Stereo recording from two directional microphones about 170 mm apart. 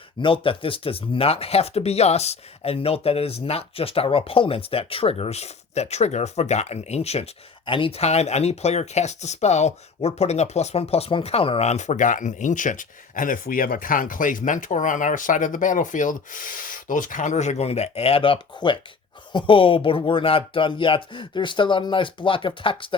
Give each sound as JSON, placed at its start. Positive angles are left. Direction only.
{"t": 0.2, "sound": "speech", "side_deg": 30}